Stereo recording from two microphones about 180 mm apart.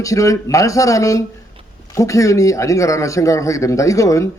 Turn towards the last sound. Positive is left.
turn(degrees=15)  # may be behind; listen again after turning